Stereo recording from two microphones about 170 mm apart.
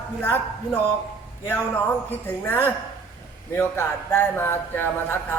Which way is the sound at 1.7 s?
10° left (ahead or behind).